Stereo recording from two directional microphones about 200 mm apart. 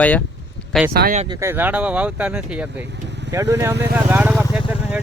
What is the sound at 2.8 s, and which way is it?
Vehicle, 60° right (ahead or behind).